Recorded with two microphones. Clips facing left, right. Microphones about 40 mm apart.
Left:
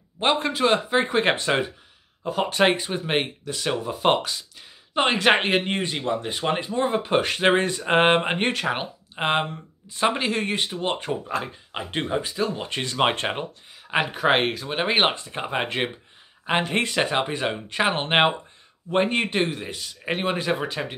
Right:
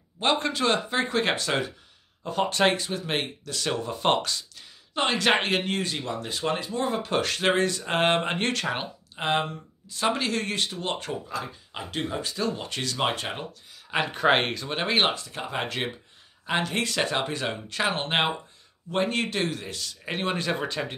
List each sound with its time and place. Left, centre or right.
0.2 s a man's voice: centre
2.2 s speech: centre
9.1 s speech: left
11.2 s speech: left
12.2 s a man's voice: centre; by 13.4 s left
13.4 s speech: left
14.0 s a man's voice: centre